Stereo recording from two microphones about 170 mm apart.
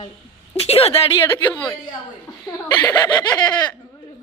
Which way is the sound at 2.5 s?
10° left (ahead or behind).